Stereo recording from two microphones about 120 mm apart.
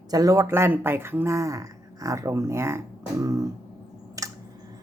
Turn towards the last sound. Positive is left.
turn(degrees=-30)  # may be behind; listen again after turning